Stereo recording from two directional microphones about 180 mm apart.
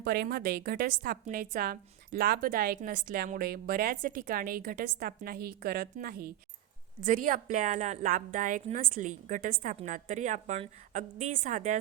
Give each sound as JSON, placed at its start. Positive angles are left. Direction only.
{"t": 0.0, "sound": "a woman's voice", "side_deg": -60}